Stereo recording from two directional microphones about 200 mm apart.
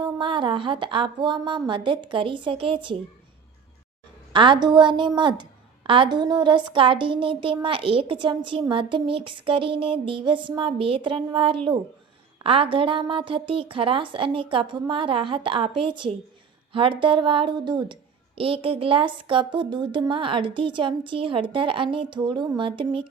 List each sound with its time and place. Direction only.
0.0 s a woman's voice: 25° right (ahead or behind)
4.3 s a woman's voice: 25° right (ahead or behind)